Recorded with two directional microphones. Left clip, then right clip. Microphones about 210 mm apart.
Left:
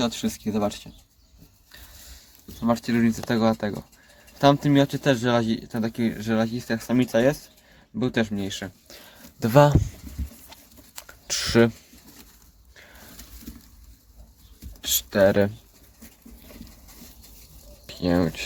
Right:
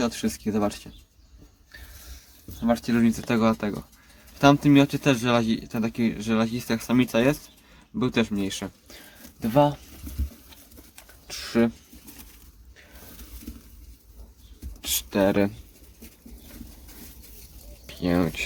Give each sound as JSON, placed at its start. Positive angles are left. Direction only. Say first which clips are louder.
{"t": 0.0, "sound": "speech", "louder": "even", "side_deg": 5}
{"t": 2.6, "sound": "speech", "louder": "even", "side_deg": 10}
{"t": 9.4, "sound": "speech", "louder": "left 4 dB", "side_deg": 30}
{"t": 10.9, "sound": "a sound", "louder": "left 9 dB", "side_deg": 35}
{"t": 14.8, "sound": "speech", "louder": "left 4 dB", "side_deg": 10}
{"t": 17.8, "sound": "speech", "louder": "left 2 dB", "side_deg": 10}